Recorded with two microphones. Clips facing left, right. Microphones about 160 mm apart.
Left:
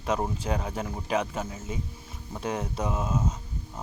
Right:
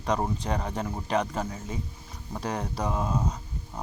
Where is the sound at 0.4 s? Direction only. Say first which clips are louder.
Even; 35° right (ahead or behind).